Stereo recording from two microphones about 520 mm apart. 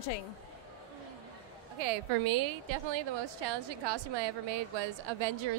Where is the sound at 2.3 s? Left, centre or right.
Right.